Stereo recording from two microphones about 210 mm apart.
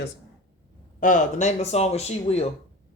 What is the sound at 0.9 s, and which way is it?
Speech, 40° left (ahead or behind).